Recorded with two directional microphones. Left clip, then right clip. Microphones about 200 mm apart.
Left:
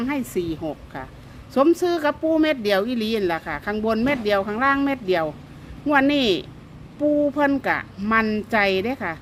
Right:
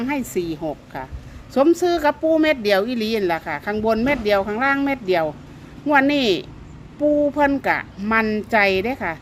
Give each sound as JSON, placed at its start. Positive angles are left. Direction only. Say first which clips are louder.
{"t": 0.0, "sound": "speech", "louder": "right 2 dB", "side_deg": -5}